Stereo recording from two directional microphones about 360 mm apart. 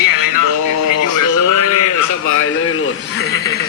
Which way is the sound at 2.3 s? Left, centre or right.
Left.